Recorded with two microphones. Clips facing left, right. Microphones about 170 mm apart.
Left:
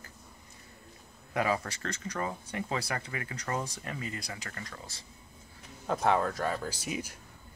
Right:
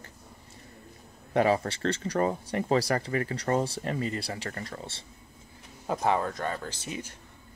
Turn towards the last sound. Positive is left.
turn(degrees=10)  # may be behind; listen again after turning